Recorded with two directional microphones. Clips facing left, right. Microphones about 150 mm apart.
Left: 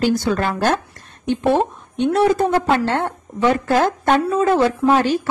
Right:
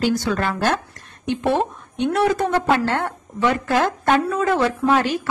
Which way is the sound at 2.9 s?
25° left (ahead or behind).